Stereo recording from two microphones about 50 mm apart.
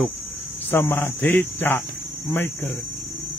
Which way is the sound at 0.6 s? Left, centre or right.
Left.